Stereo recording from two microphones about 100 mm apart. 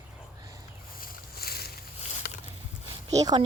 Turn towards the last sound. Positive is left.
turn(degrees=-40)  # may be behind; listen again after turning